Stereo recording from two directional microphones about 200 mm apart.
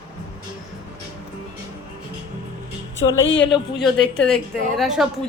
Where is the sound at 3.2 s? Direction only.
65° left (ahead or behind).